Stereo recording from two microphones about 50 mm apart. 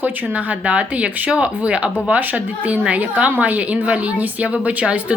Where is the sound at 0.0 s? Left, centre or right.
Right.